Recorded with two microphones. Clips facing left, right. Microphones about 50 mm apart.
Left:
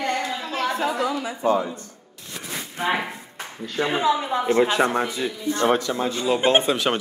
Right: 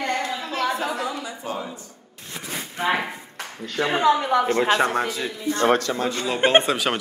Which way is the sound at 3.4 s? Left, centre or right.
Centre.